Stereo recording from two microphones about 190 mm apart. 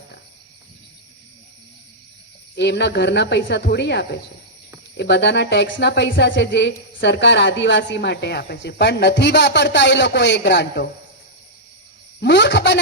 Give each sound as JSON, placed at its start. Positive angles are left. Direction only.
{"t": 2.6, "sound": "speech", "side_deg": 65}
{"t": 12.2, "sound": "speech", "side_deg": 65}